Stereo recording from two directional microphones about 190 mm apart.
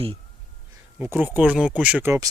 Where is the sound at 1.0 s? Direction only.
10° right (ahead or behind).